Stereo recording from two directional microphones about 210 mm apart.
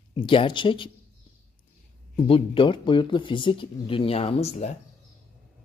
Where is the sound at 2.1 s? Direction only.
25° left (ahead or behind).